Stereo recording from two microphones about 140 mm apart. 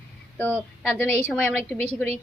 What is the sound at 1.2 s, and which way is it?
Speech, 15° left (ahead or behind).